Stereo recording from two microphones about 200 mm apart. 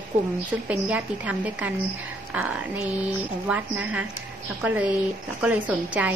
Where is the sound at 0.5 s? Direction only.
5° right (ahead or behind).